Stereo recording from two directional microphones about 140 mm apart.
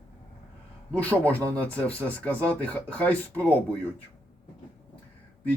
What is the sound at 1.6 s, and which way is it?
Speech, 10° left (ahead or behind).